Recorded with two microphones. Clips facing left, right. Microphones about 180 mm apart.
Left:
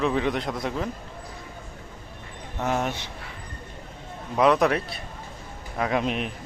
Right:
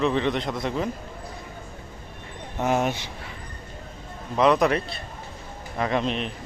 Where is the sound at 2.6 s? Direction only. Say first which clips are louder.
Right 3 dB; 15° right (ahead or behind).